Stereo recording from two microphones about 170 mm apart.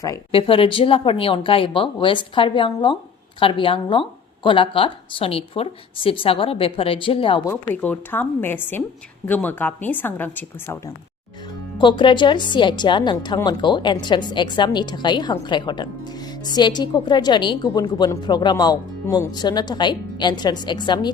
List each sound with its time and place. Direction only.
0.3 s speech: 30° left (ahead or behind)
7.4 s a woman's voice: 10° left (ahead or behind)
11.8 s a woman's voice: 30° left (ahead or behind)